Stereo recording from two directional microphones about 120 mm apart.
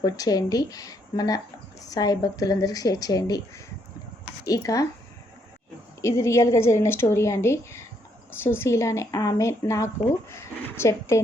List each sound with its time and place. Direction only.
0.0 s speech: 30° left (ahead or behind)
6.0 s speech: 25° left (ahead or behind)